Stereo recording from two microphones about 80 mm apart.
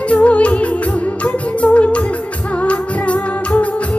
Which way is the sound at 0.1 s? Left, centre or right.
Centre.